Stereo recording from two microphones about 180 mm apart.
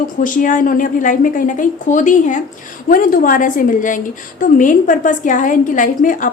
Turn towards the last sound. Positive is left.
turn(degrees=45)  # may be behind; listen again after turning